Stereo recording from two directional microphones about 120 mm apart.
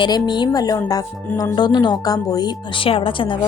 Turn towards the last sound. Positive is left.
turn(degrees=45)  # may be behind; listen again after turning